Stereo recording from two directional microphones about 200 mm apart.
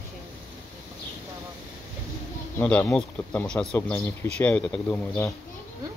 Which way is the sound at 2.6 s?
10° left (ahead or behind).